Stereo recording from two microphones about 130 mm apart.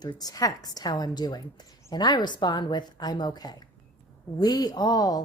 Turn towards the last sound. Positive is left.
turn(degrees=30)  # may be behind; listen again after turning